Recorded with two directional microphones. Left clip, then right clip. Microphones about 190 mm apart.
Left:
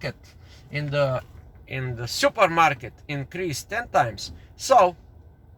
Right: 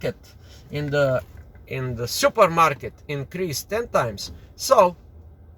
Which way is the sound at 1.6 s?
10° right (ahead or behind).